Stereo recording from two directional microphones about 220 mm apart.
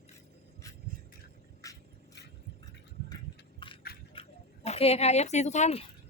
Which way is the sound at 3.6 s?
20° left (ahead or behind).